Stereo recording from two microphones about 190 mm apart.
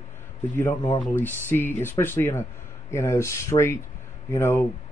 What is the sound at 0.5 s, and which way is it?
Speech, 15° left (ahead or behind).